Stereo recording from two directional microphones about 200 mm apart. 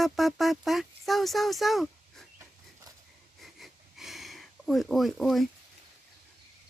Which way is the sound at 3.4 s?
Centre (ahead or behind).